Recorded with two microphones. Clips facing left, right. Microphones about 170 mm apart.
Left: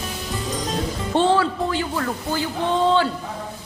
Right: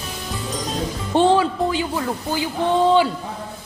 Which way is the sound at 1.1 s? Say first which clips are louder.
Right 2 dB; 15° right (ahead or behind).